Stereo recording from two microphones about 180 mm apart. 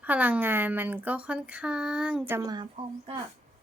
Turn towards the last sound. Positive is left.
turn(degrees=-25)  # may be behind; listen again after turning